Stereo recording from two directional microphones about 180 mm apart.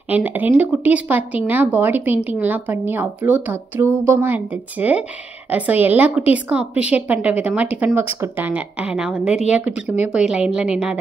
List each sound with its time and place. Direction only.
0.1 s a woman's voice: 10° right (ahead or behind)